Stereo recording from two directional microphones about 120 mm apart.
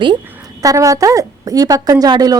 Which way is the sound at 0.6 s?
30° right (ahead or behind).